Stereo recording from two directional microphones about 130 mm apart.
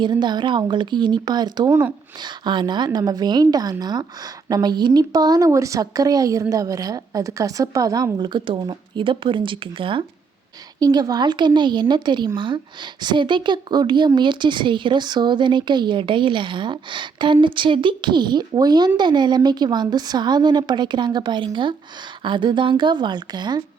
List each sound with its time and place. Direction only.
0.0 s speech: 35° right (ahead or behind)
10.8 s speech: 30° right (ahead or behind)